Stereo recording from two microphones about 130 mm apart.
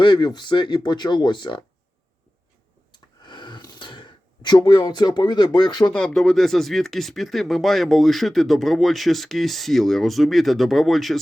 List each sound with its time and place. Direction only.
0.0 s speech: 35° left (ahead or behind)
2.9 s a sound: 35° left (ahead or behind)
5.5 s speech: 35° left (ahead or behind)
5.9 s speech: 5° left (ahead or behind)